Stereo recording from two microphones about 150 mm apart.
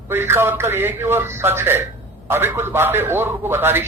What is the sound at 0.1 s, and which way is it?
A man's voice, 15° right (ahead or behind).